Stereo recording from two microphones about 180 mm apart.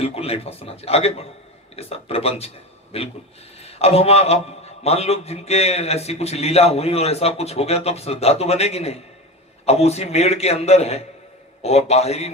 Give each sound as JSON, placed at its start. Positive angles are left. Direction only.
{"t": 0.0, "sound": "a man's voice", "side_deg": 35}